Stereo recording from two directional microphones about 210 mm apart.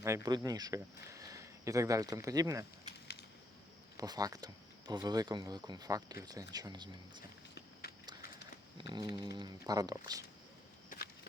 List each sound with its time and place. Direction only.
0.0 s speech: 15° right (ahead or behind)
3.9 s speech: 20° right (ahead or behind)
7.5 s walk: 50° left (ahead or behind)
8.8 s speech: 20° right (ahead or behind)
10.8 s a sound: 45° left (ahead or behind)